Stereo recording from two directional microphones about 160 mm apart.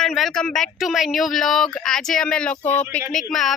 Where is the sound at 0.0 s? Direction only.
Centre (ahead or behind).